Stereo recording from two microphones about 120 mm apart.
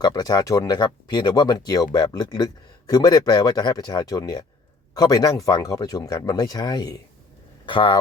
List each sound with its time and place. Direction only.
0.0 s speech: 35° left (ahead or behind)